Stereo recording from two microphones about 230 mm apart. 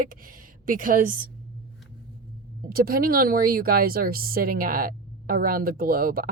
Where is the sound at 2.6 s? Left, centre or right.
Right.